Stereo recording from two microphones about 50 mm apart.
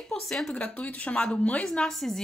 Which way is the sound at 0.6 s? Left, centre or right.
Left.